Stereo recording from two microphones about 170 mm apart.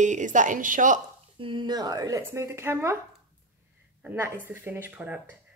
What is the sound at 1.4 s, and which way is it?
Speech, 30° right (ahead or behind).